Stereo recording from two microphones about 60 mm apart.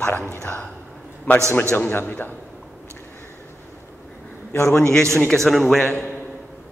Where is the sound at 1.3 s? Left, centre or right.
Left.